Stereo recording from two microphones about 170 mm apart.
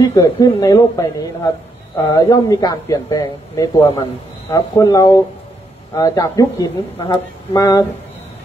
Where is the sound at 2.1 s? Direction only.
20° left (ahead or behind).